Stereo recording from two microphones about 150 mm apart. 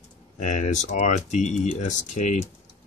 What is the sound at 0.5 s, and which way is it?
Speech, 50° left (ahead or behind).